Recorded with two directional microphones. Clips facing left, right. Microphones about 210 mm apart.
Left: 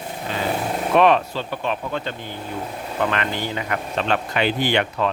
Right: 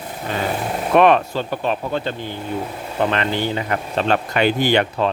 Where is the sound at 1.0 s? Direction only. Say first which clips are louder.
Right 3 dB; 55° right (ahead or behind).